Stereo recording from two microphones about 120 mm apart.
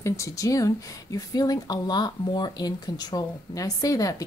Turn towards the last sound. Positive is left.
turn(degrees=30)  # may be behind; listen again after turning